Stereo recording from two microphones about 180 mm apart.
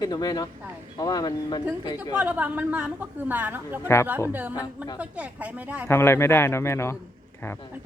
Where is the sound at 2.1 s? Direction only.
10° right (ahead or behind).